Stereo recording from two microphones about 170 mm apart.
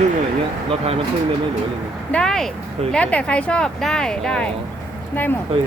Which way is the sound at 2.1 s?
5° left (ahead or behind).